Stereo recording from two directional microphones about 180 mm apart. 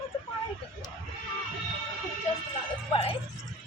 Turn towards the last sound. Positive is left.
turn(degrees=30)  # may be behind; listen again after turning